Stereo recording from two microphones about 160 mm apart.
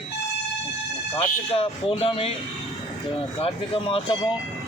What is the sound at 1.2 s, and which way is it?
A man's voice, 35° left (ahead or behind).